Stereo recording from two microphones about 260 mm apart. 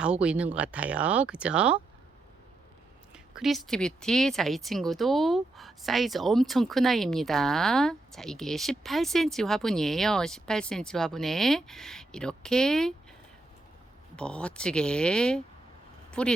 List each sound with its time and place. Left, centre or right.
0.0 s speech: centre
3.1 s speech: centre
14.2 s speech: centre